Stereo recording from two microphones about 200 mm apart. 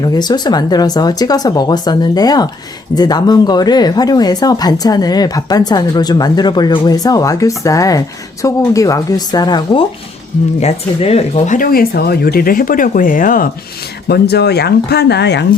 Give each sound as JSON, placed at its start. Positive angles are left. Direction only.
{"t": 0.0, "sound": "speech", "side_deg": 20}
{"t": 10.6, "sound": "speech", "side_deg": 30}
{"t": 14.1, "sound": "speech", "side_deg": 55}